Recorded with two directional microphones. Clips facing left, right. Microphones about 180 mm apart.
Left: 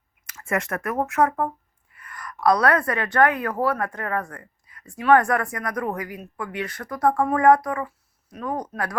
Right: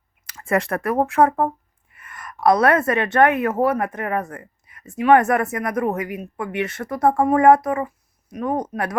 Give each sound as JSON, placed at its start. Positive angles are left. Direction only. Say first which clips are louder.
{"t": 0.3, "sound": "a woman's voice", "louder": "right 5 dB", "side_deg": -35}